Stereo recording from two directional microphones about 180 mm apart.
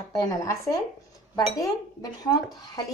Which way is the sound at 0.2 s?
20° left (ahead or behind).